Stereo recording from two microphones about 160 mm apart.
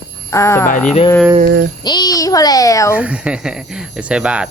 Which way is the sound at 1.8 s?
25° left (ahead or behind).